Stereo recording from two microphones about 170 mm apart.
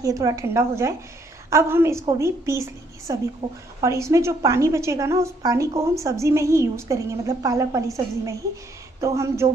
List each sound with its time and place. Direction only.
0.0 s a woman's voice: 20° right (ahead or behind)